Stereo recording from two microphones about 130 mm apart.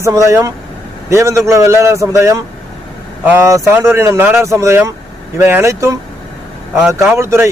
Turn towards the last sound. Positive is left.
turn(degrees=-20)  # may be behind; listen again after turning